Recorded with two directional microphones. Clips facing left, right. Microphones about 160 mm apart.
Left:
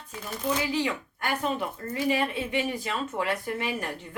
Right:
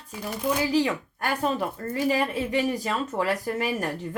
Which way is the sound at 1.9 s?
40° right (ahead or behind).